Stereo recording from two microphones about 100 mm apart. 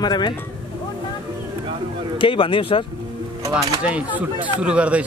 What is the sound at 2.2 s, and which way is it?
Speech, 60° left (ahead or behind).